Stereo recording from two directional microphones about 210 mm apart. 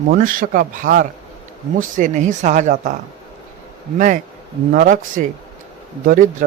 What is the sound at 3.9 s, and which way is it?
Speech, 35° right (ahead or behind).